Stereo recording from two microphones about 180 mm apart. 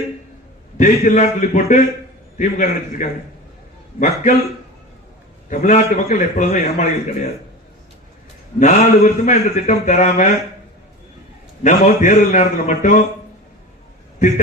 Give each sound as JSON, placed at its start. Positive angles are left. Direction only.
{"t": 0.8, "sound": "a man's voice", "side_deg": 45}
{"t": 5.5, "sound": "a man's voice", "side_deg": 40}
{"t": 8.5, "sound": "a man's voice", "side_deg": 40}
{"t": 11.6, "sound": "a man's voice", "side_deg": 45}